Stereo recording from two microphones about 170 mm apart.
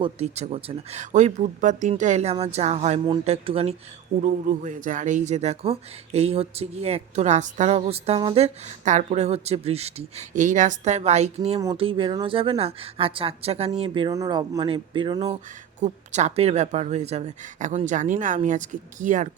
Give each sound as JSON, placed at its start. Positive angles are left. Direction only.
{"t": 0.0, "sound": "speech", "side_deg": -40}
{"t": 4.2, "sound": "speech", "side_deg": -50}
{"t": 15.8, "sound": "speech", "side_deg": -45}